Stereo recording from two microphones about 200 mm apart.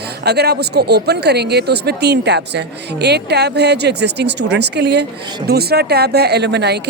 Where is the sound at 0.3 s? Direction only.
55° right (ahead or behind).